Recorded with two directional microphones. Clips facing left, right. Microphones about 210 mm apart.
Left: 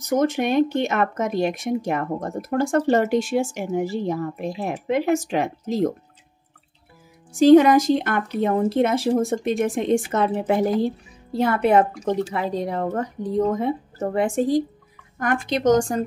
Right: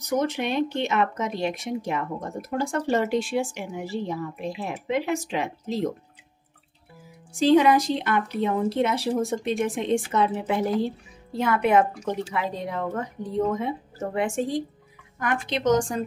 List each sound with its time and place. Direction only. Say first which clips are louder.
0.2 s speech: left 8 dB; 45° left (ahead or behind)
7.3 s speech: left 6 dB; 45° left (ahead or behind)
11.3 s speech: left 3 dB; 35° left (ahead or behind)